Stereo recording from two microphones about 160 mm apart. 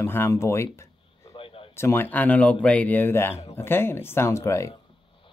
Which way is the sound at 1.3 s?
30° left (ahead or behind).